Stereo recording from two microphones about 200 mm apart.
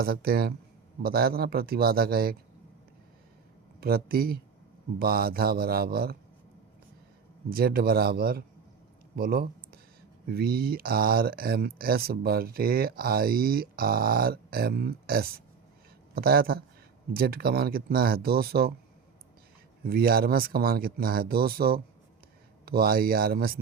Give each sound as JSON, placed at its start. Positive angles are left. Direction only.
{"t": 0.0, "sound": "speech", "side_deg": -50}
{"t": 3.8, "sound": "speech", "side_deg": -50}
{"t": 7.5, "sound": "speech", "side_deg": -50}
{"t": 9.1, "sound": "a sound", "side_deg": -50}
{"t": 10.2, "sound": "speech", "side_deg": -50}
{"t": 19.8, "sound": "speech", "side_deg": -50}